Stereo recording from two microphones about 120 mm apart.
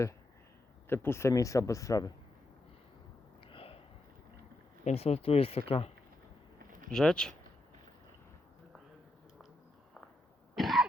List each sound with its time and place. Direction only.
0.9 s a man's voice: 20° left (ahead or behind)
3.4 s a sound: 50° left (ahead or behind)
4.9 s speech: 60° left (ahead or behind)
6.7 s a sound: 90° right
6.9 s speech: 5° left (ahead or behind)
10.5 s throat clearing: centre (ahead or behind)